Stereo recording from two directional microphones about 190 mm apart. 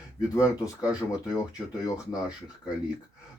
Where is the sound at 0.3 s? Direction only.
20° left (ahead or behind).